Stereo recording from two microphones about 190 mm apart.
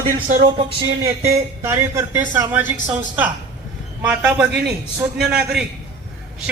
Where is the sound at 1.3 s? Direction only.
15° right (ahead or behind).